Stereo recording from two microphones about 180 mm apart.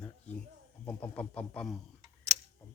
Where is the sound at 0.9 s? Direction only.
10° left (ahead or behind).